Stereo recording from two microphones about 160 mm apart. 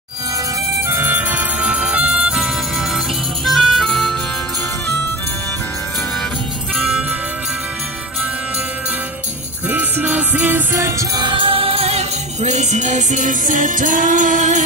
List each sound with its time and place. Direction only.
0.8 s music: 15° right (ahead or behind); by 4.2 s 5° left (ahead or behind)
6.8 s music: 5° right (ahead or behind)
9.7 s music: 10° right (ahead or behind); by 14.6 s 50° right (ahead or behind)